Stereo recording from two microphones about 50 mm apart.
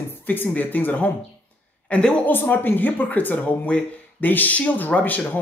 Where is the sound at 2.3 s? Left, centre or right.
Left.